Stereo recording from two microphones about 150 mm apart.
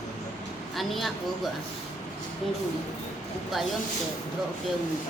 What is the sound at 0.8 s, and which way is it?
Speech, centre (ahead or behind).